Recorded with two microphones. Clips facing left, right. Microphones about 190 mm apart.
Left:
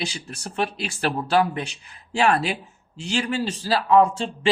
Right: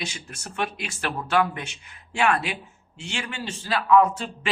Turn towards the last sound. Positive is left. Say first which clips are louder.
# left 4 dB
turn(degrees=30)  # may be behind; listen again after turning